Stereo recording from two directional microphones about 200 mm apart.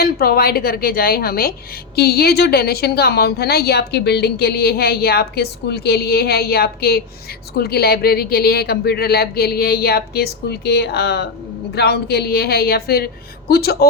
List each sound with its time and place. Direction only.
0.0 s a woman's voice: 50° left (ahead or behind)